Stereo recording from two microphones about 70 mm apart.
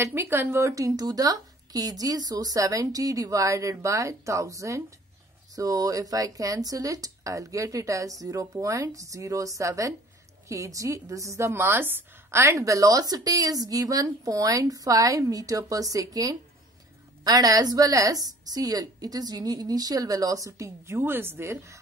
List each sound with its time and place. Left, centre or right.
0.0 s a woman's voice: right